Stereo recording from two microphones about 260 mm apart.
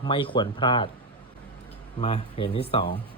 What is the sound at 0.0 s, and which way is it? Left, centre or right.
Speech, centre.